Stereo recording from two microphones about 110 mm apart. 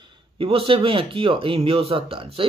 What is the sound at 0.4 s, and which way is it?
Speech, 55° right (ahead or behind).